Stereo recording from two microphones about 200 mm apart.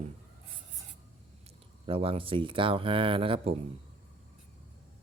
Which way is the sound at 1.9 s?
30° right (ahead or behind).